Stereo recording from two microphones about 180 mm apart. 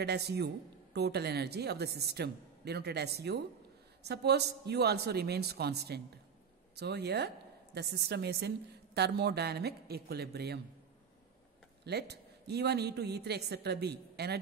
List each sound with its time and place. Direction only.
0.0 s a woman's voice: 65° right (ahead or behind)
11.8 s a woman's voice: 65° right (ahead or behind)